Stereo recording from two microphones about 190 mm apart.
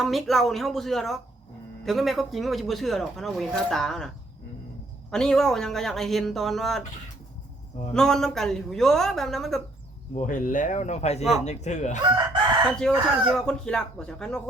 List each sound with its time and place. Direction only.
0.0 s speech: centre (ahead or behind)
5.1 s speech: 5° left (ahead or behind)
7.9 s speech: 5° left (ahead or behind)
10.2 s speech: 45° left (ahead or behind)
12.0 s chicken: 25° right (ahead or behind)
12.8 s speech: centre (ahead or behind)